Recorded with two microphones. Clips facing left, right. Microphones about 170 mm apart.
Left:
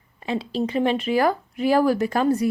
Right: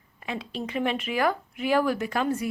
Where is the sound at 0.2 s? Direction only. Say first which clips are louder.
Left 8 dB; 30° left (ahead or behind).